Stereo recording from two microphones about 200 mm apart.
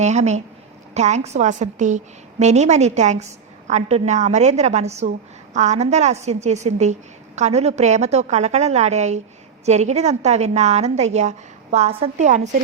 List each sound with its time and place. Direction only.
0.0 s a woman's voice: 35° right (ahead or behind)